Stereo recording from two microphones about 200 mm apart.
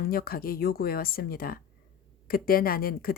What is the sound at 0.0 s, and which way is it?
Speech, 45° left (ahead or behind).